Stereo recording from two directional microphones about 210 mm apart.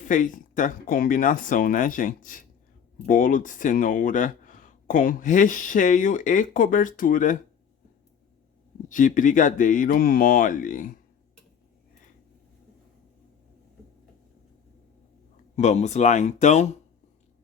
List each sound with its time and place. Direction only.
0.0 s speech: 40° left (ahead or behind)
8.9 s speech: 35° left (ahead or behind)
15.5 s speech: 35° left (ahead or behind)